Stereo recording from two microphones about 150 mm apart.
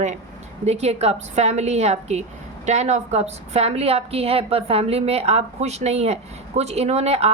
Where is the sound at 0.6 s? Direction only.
45° right (ahead or behind).